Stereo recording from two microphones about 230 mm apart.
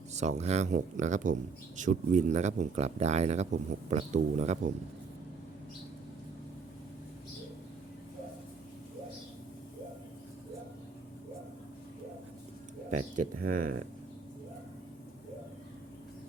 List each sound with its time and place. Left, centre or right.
0.1 s speech: right
13.5 s speech: right